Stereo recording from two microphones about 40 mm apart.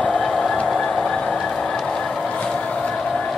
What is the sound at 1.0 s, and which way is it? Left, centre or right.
Vehicle, left.